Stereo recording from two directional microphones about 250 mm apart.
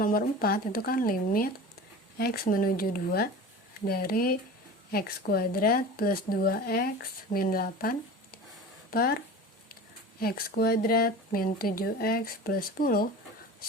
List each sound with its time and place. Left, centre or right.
0.0 s speech: left
10.2 s speech: left